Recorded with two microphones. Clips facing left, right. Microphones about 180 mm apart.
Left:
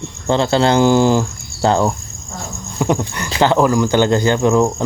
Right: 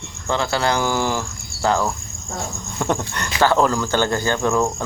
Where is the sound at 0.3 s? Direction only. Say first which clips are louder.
Left 6 dB; 30° left (ahead or behind).